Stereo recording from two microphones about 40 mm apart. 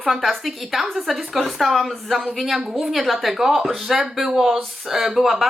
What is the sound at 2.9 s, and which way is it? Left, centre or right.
Speech, centre.